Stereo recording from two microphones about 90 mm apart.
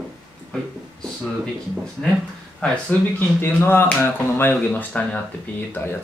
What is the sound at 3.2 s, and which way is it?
Speech, 25° left (ahead or behind).